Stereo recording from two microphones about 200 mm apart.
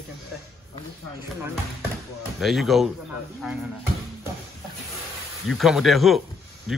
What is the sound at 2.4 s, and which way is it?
Speech, centre (ahead or behind).